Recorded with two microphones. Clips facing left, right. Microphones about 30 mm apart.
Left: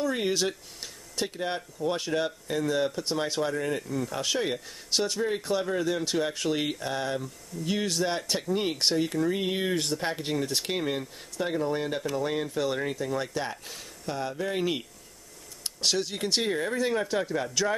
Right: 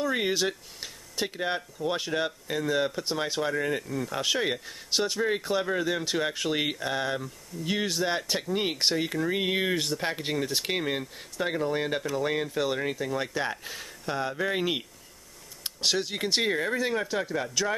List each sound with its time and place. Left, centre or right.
0.0 s speech: centre